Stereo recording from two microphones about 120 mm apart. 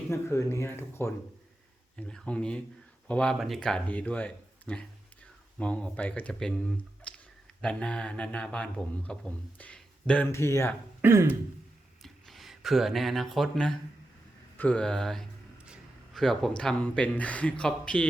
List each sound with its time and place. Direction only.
0.1 s speech: 25° left (ahead or behind)
2.0 s speech: 10° left (ahead or behind)
10.2 s speech: 25° left (ahead or behind)
11.0 s throat clearing: 20° right (ahead or behind)
12.0 s speech: centre (ahead or behind)